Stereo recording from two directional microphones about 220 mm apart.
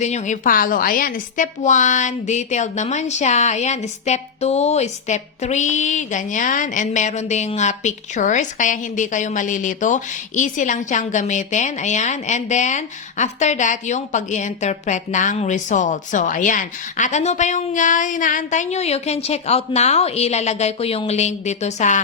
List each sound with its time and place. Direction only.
0.0 s a woman's voice: 30° left (ahead or behind)